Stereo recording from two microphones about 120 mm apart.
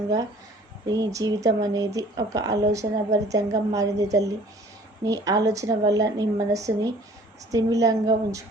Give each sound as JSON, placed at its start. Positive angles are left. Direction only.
{"t": 0.9, "sound": "speech", "side_deg": -30}